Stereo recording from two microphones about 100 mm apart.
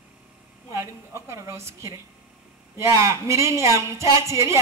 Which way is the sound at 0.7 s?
30° right (ahead or behind).